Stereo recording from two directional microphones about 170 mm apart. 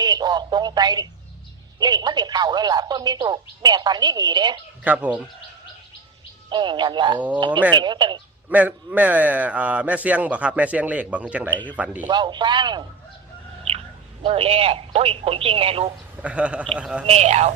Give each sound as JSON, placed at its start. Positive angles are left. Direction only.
{"t": 0.0, "sound": "telephone", "side_deg": -25}
{"t": 1.8, "sound": "speech", "side_deg": -25}
{"t": 4.8, "sound": "a man's voice", "side_deg": -10}
{"t": 6.5, "sound": "speech", "side_deg": -25}
{"t": 8.4, "sound": "a man's voice", "side_deg": -10}
{"t": 11.5, "sound": "a man's voice", "side_deg": 10}
{"t": 12.0, "sound": "speech", "side_deg": -25}
{"t": 14.3, "sound": "speech", "side_deg": -35}
{"t": 16.2, "sound": "a man's voice", "side_deg": -5}
{"t": 17.1, "sound": "speech", "side_deg": -40}